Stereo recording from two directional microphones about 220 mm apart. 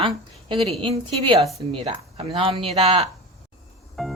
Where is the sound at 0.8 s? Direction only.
25° right (ahead or behind).